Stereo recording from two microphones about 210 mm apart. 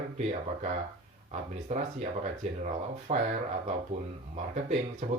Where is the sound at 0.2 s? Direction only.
30° right (ahead or behind).